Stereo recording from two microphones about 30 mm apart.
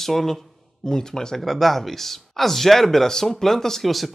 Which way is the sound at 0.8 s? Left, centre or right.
Left.